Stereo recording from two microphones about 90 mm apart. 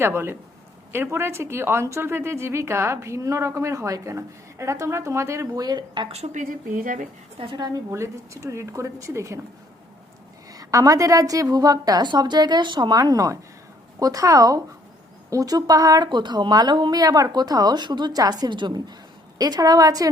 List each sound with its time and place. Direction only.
0.0 s a woman's voice: 25° right (ahead or behind)
5.6 s speech: 55° right (ahead or behind)
7.5 s speech: 45° right (ahead or behind)
7.9 s a woman's voice: 35° right (ahead or behind)
10.5 s a woman's voice: 40° right (ahead or behind)
16.0 s speech: 55° right (ahead or behind)
19.4 s speech: 45° right (ahead or behind)